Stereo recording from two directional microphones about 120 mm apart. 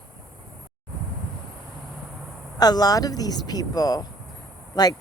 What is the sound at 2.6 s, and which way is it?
Speech, 35° left (ahead or behind).